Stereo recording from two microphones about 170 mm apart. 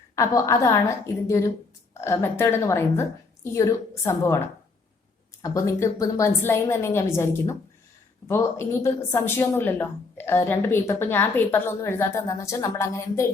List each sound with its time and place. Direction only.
0.2 s a woman's voice: 20° left (ahead or behind)